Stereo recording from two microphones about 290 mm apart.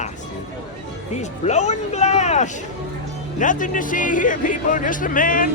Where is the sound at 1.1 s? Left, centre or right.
Left.